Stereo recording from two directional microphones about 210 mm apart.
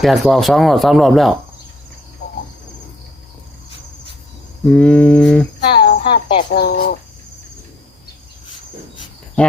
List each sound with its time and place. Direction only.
0.0 s speech: centre (ahead or behind)
4.6 s speech: 5° left (ahead or behind)
5.7 s speech: 50° left (ahead or behind)
9.4 s speech: 5° left (ahead or behind)